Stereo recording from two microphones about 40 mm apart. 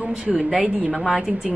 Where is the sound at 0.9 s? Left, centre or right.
Centre.